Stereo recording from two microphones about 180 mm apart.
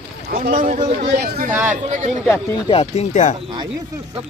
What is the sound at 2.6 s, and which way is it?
Speech, 35° left (ahead or behind).